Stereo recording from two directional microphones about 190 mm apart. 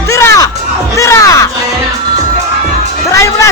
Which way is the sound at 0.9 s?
15° left (ahead or behind).